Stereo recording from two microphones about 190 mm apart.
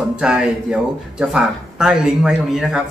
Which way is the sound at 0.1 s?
5° right (ahead or behind).